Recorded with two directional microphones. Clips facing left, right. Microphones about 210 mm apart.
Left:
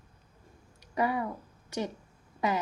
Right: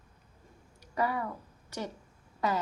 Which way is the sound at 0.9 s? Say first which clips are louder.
Left 2 dB; 20° left (ahead or behind).